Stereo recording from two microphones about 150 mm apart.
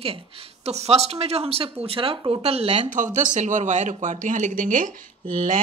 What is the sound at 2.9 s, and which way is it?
Speech, 60° right (ahead or behind).